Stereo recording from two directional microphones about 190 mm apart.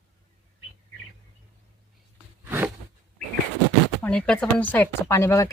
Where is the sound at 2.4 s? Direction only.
10° right (ahead or behind).